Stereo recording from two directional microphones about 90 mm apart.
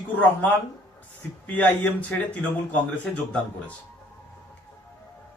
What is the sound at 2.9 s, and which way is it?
Speech, 10° left (ahead or behind).